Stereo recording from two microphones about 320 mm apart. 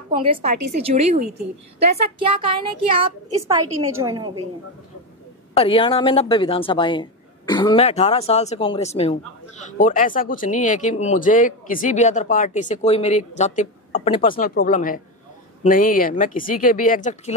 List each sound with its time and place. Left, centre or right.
0.2 s a woman's voice: centre
5.6 s speech: centre